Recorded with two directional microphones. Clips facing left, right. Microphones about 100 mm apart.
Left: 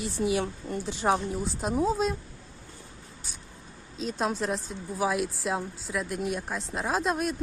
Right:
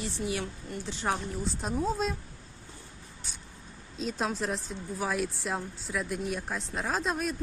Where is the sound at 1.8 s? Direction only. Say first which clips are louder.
Left 4 dB; centre (ahead or behind).